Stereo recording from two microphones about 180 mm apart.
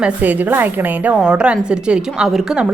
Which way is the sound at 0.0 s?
10° right (ahead or behind).